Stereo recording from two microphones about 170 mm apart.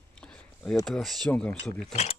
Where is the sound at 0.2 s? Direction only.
5° left (ahead or behind).